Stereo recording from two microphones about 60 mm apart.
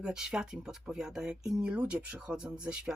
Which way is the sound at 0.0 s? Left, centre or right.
Centre.